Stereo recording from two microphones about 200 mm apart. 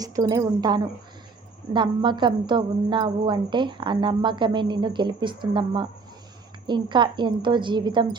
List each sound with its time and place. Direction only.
0.0 s a woman's voice: 20° right (ahead or behind)